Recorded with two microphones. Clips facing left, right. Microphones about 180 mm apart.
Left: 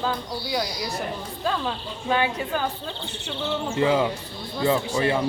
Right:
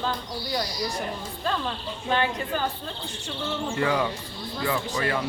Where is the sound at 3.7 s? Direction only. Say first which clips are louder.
Left 4 dB; 20° left (ahead or behind).